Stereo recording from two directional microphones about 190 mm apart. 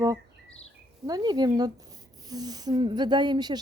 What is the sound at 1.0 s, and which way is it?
Speech, 20° right (ahead or behind).